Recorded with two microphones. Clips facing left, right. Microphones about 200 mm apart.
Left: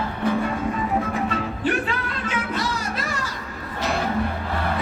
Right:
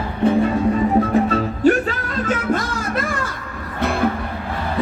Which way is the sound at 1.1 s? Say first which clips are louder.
Right 8 dB; 40° right (ahead or behind).